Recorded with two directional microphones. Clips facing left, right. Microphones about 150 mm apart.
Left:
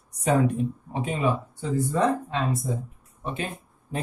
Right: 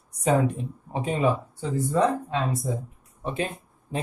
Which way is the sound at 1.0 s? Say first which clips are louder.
Right 2 dB; 35° right (ahead or behind).